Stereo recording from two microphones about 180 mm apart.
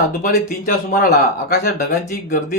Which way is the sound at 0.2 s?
55° left (ahead or behind).